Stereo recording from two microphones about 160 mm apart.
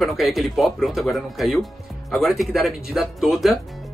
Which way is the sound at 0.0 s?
Centre (ahead or behind).